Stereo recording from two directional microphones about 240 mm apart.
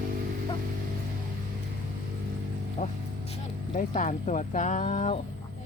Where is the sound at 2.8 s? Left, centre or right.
Left.